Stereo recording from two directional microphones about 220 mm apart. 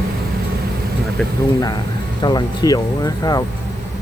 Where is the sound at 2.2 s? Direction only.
20° left (ahead or behind).